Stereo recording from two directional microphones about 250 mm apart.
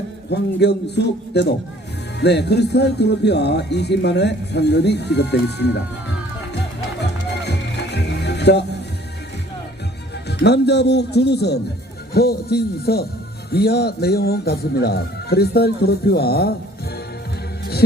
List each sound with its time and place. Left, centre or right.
0.3 s a man's voice: left
6.5 s music: left
10.2 s a man's voice: left